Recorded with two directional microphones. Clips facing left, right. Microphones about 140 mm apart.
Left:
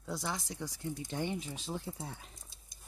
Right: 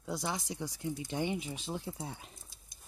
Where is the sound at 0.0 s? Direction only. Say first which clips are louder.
Right 2 dB; 10° right (ahead or behind).